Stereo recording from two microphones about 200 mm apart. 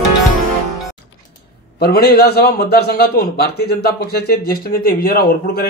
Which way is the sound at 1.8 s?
50° left (ahead or behind).